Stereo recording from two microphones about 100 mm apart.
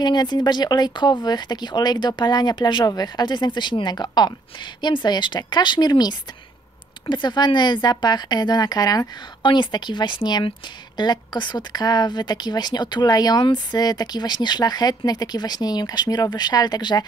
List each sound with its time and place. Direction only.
0.0 s speech: 45° left (ahead or behind)
9.4 s speech: 50° left (ahead or behind)